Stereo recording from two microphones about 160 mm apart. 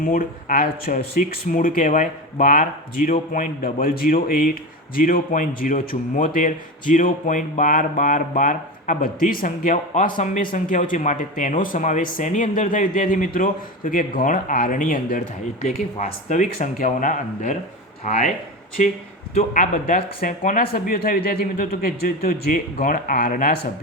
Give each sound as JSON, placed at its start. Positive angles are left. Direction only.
{"t": 0.0, "sound": "a man's voice", "side_deg": 60}
{"t": 15.6, "sound": "speech", "side_deg": 50}
{"t": 19.4, "sound": "a man's voice", "side_deg": 55}